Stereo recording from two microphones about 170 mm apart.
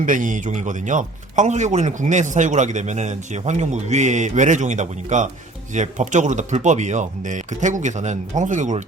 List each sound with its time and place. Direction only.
0.0 s a man's voice: 50° right (ahead or behind)